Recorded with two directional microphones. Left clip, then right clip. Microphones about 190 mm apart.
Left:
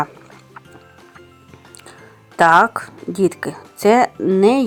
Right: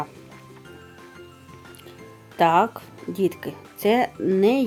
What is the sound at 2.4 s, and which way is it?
Speech, 20° left (ahead or behind).